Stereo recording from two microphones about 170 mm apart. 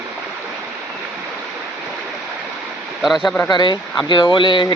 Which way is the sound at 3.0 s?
Centre (ahead or behind).